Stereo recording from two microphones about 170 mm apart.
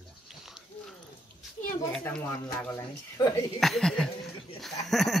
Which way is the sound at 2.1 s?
10° left (ahead or behind).